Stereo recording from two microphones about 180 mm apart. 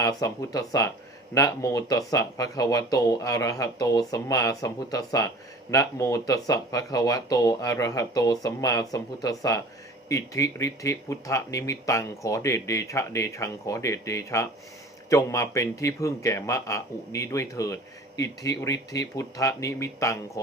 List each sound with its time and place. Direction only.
0.0 s speech: 20° left (ahead or behind)